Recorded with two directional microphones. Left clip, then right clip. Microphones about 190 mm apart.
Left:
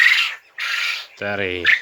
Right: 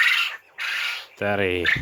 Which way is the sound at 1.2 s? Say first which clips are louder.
Right 3 dB; 20° right (ahead or behind).